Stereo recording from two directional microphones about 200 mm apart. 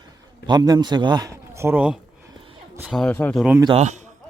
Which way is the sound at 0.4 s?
20° right (ahead or behind).